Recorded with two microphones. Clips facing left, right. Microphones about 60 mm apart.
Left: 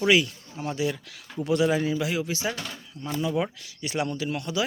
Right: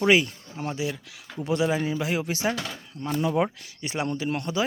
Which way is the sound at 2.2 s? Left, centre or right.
Right.